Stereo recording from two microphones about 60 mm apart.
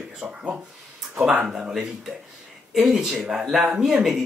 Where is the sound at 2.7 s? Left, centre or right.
Centre.